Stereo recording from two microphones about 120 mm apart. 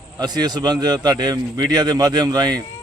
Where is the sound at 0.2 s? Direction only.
35° right (ahead or behind).